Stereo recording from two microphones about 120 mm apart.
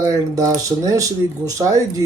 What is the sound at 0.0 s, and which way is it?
Speech, 30° right (ahead or behind).